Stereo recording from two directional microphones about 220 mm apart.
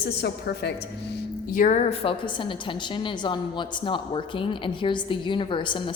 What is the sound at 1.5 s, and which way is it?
A woman's voice, 35° left (ahead or behind).